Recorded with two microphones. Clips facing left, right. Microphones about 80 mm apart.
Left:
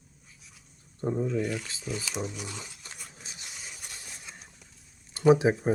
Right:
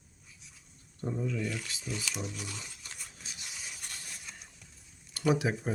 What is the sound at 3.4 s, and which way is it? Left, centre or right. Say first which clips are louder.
Rub: even; centre.